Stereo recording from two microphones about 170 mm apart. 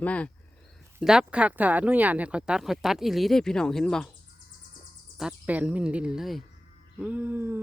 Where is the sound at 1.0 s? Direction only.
5° right (ahead or behind).